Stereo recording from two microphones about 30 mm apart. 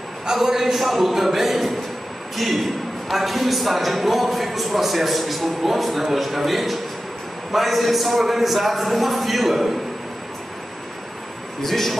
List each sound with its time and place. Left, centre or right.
0.3 s a man's voice: centre
11.6 s a man's voice: centre